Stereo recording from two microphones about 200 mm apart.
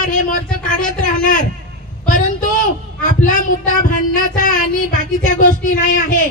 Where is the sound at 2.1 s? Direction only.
45° left (ahead or behind).